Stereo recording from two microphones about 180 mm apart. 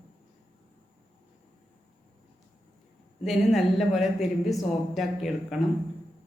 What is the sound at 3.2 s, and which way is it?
A woman's voice, centre (ahead or behind).